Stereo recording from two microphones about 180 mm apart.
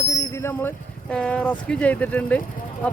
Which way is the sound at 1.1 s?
5° left (ahead or behind).